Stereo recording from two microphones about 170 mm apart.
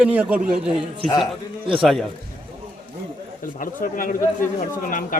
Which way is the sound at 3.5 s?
55° left (ahead or behind).